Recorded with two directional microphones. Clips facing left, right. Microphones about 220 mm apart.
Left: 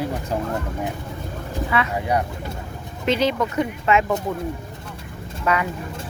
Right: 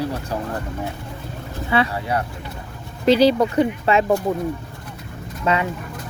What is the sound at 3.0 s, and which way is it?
Speech, 35° right (ahead or behind).